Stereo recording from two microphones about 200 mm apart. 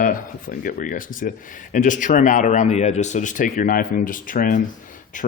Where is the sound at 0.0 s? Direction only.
45° left (ahead or behind).